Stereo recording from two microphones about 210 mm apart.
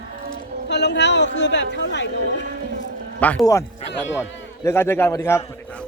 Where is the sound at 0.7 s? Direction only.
55° left (ahead or behind).